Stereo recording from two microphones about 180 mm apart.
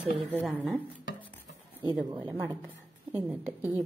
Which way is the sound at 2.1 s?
20° right (ahead or behind).